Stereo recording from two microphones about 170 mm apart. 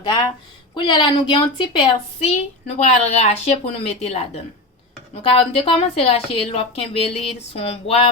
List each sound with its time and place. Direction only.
0.0 s a woman's voice: 30° left (ahead or behind)
2.1 s speech: 40° left (ahead or behind)